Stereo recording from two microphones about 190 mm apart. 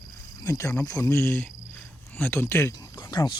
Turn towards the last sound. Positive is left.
turn(degrees=25)  # may be behind; listen again after turning